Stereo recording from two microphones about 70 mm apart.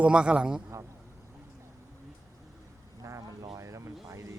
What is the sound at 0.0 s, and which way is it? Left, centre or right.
Speech, centre.